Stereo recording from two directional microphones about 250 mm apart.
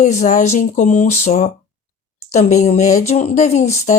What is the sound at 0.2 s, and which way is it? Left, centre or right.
Speech, left.